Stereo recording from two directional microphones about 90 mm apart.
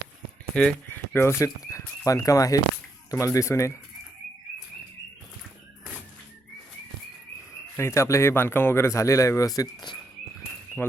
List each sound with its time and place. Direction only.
0.5 s speech: 10° left (ahead or behind)
0.9 s speech: 25° left (ahead or behind)
7.8 s speech: 30° left (ahead or behind)
10.8 s speech: 20° left (ahead or behind)